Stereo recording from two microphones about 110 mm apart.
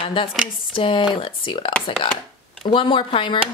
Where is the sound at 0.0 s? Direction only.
50° left (ahead or behind).